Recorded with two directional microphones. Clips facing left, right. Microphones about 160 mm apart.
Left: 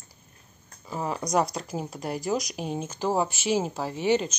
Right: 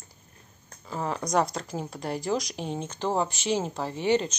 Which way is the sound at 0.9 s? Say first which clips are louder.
Even; 10° left (ahead or behind).